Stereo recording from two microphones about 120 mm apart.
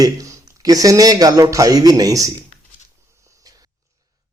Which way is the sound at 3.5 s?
30° right (ahead or behind).